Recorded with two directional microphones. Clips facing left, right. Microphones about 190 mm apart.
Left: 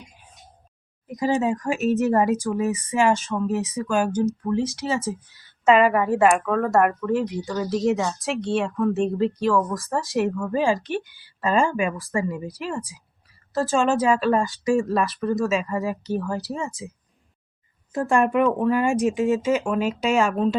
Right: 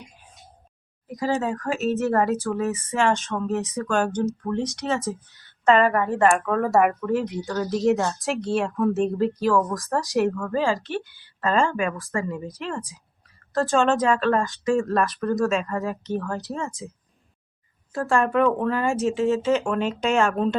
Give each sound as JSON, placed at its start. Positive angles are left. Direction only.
{"t": 1.0, "sound": "speech", "side_deg": 20}
{"t": 10.4, "sound": "speech", "side_deg": 15}
{"t": 17.9, "sound": "speech", "side_deg": 15}
{"t": 19.7, "sound": "speech", "side_deg": 5}